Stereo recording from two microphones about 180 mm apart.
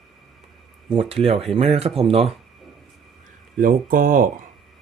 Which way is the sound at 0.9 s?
30° right (ahead or behind).